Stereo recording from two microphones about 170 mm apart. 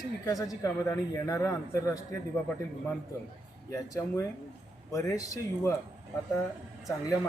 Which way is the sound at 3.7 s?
20° left (ahead or behind).